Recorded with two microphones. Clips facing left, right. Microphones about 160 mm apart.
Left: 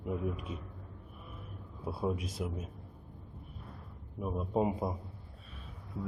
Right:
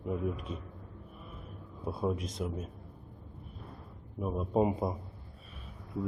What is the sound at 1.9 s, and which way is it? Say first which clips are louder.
Speech: right 1 dB; 5° left (ahead or behind).